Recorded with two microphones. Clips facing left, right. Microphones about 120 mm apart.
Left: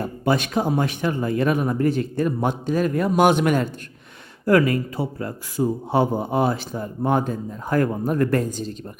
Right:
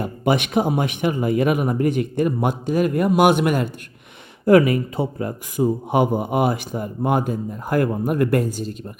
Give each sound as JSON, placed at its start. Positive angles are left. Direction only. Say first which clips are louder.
{"t": 0.0, "sound": "speech", "louder": "right 1 dB", "side_deg": -20}
{"t": 4.4, "sound": "speech", "louder": "right 3 dB", "side_deg": -20}